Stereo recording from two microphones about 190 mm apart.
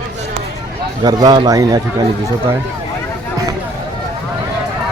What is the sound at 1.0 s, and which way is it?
Speech, 20° right (ahead or behind).